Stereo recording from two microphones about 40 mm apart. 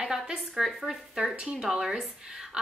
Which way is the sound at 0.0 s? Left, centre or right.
Centre.